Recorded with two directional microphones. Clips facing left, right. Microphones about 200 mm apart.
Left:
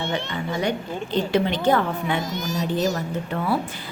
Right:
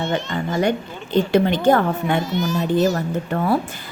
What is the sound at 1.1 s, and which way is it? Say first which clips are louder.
A woman's voice: right 5 dB; 50° right (ahead or behind).